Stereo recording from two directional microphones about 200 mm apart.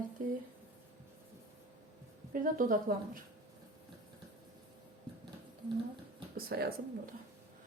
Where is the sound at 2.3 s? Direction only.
45° right (ahead or behind).